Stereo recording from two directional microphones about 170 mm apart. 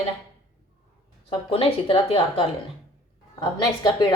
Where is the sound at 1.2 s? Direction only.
30° left (ahead or behind).